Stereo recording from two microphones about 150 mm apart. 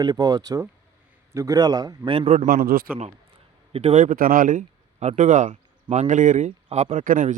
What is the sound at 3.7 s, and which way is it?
Speech, 45° right (ahead or behind).